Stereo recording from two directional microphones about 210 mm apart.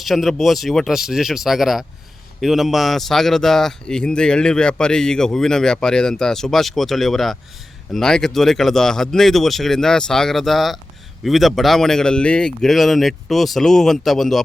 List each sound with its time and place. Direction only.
0.0 s speech: centre (ahead or behind)